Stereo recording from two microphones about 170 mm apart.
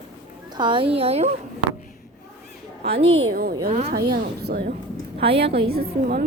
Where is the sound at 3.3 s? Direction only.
60° right (ahead or behind).